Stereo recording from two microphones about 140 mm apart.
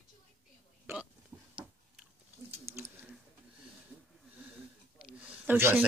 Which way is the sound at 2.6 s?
20° right (ahead or behind).